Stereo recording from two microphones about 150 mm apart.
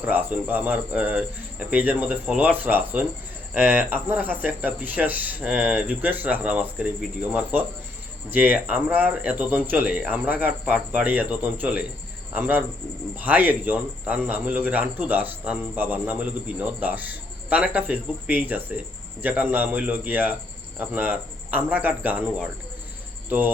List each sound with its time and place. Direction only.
0.0 s a man's voice: 10° right (ahead or behind)